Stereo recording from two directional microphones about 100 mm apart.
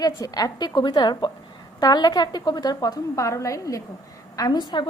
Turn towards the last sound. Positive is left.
turn(degrees=45)  # may be behind; listen again after turning